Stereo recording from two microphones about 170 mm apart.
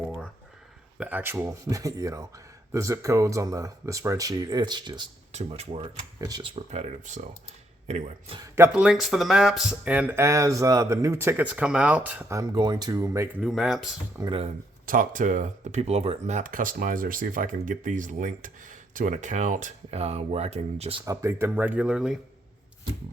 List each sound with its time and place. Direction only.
0.9 s speech: 10° right (ahead or behind); by 5.0 s 25° right (ahead or behind)
5.3 s speech: 35° right (ahead or behind); by 6.5 s 20° right (ahead or behind)
6.7 s speech: 40° right (ahead or behind)
8.4 s speech: 15° right (ahead or behind)
13.4 s speech: centre (ahead or behind)
14.2 s speech: 30° right (ahead or behind)
14.8 s speech: 50° right (ahead or behind)
21.0 s speech: 15° right (ahead or behind)